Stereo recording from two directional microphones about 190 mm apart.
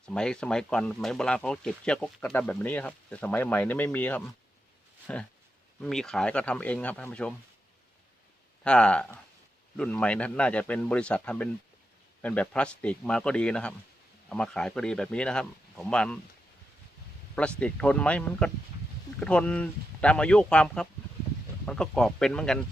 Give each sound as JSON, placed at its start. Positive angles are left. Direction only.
{"t": 0.0, "sound": "speech", "side_deg": 5}
{"t": 8.6, "sound": "speech", "side_deg": 5}
{"t": 17.3, "sound": "speech", "side_deg": 5}